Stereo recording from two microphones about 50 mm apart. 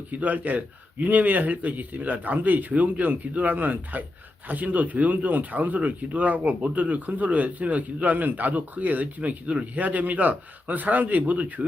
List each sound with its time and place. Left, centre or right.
0.1 s speech: right